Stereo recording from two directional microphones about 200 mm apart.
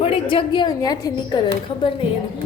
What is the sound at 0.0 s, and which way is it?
A woman's voice, 25° left (ahead or behind).